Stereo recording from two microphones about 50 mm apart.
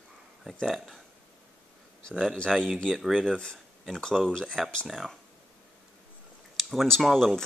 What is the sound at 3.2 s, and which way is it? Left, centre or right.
Speech, centre.